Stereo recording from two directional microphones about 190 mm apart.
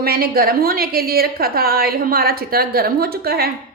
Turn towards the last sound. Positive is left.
turn(degrees=-55)  # may be behind; listen again after turning